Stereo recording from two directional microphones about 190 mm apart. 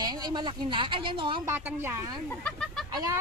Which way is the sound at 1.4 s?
10° right (ahead or behind).